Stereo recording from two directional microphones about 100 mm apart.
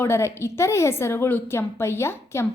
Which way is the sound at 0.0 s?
25° left (ahead or behind).